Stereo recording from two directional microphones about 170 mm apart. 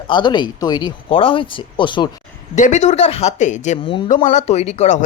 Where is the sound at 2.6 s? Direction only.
45° left (ahead or behind).